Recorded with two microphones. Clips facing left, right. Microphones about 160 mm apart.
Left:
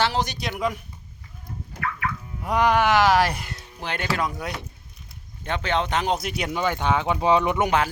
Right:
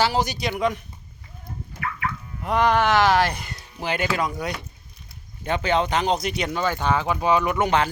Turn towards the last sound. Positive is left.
turn(degrees=5)  # may be behind; listen again after turning